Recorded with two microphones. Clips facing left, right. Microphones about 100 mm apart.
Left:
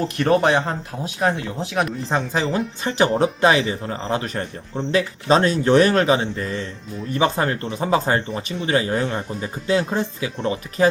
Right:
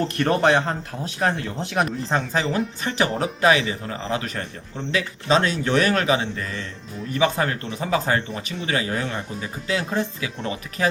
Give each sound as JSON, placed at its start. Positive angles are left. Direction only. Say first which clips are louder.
{"t": 0.0, "sound": "speech", "louder": "left 2 dB", "side_deg": 5}
{"t": 2.8, "sound": "a man's voice", "louder": "left 7 dB", "side_deg": 25}